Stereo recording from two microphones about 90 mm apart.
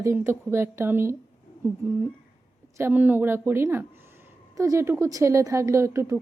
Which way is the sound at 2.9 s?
20° right (ahead or behind).